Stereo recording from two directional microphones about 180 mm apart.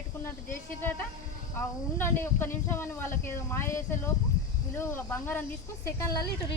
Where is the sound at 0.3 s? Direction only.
15° left (ahead or behind).